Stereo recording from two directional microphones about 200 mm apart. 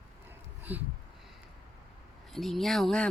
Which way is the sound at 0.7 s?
10° right (ahead or behind).